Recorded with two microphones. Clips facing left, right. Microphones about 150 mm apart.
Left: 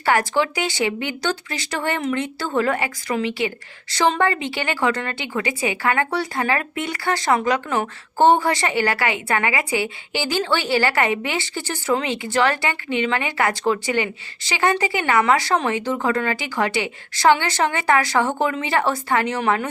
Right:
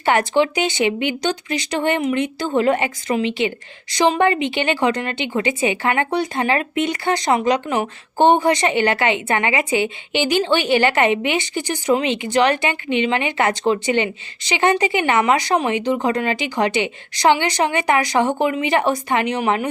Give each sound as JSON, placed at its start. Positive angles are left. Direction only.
{"t": 0.0, "sound": "a woman's voice", "side_deg": -20}